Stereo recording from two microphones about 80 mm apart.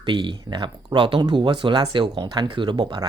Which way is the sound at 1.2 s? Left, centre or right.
Right.